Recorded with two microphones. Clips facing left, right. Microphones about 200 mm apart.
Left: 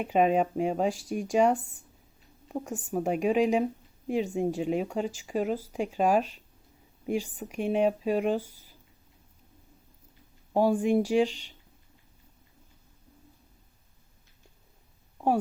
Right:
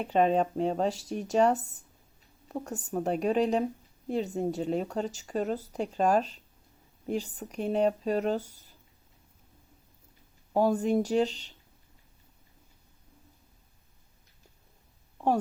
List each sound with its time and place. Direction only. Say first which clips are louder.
0.0 s speech: left 1 dB; 10° left (ahead or behind)
10.5 s speech: left 1 dB; 10° left (ahead or behind)